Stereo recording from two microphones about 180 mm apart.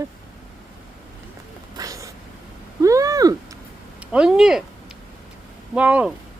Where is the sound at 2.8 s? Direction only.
15° right (ahead or behind).